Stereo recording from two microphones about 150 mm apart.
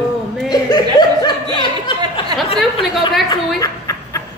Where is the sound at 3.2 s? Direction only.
25° left (ahead or behind).